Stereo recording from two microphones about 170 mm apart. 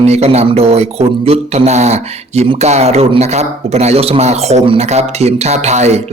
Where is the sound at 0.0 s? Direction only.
40° right (ahead or behind).